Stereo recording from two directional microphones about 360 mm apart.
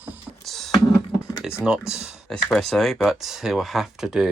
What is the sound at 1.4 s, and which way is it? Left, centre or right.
Speech, centre.